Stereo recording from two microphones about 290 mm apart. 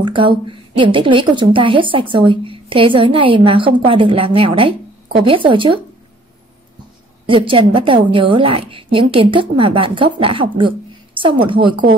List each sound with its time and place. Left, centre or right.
0.0 s a woman's voice: centre
7.2 s a woman's voice: centre